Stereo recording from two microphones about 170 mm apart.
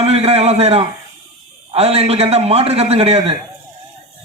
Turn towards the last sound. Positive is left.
turn(degrees=-35)  # may be behind; listen again after turning